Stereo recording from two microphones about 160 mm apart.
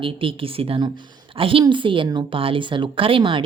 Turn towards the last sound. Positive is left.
turn(degrees=-30)  # may be behind; listen again after turning